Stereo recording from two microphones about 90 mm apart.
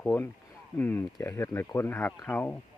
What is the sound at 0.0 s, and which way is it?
Speech, 25° left (ahead or behind).